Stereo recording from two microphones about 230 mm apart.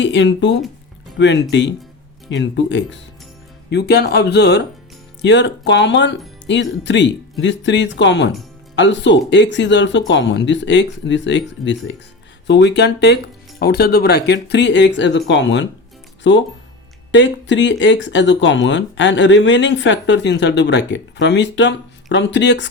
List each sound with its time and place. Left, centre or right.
0.0 s speech: left